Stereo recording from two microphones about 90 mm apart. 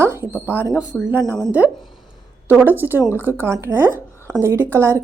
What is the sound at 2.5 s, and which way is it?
A woman's voice, 20° right (ahead or behind).